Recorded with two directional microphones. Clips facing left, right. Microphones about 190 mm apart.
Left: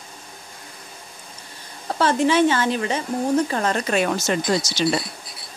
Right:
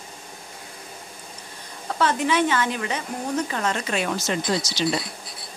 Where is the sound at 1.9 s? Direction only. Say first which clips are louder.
Left 4 dB; 30° left (ahead or behind); by 4.8 s 45° left (ahead or behind).